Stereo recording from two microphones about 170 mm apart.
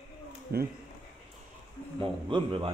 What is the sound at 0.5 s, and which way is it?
Speech, 65° right (ahead or behind).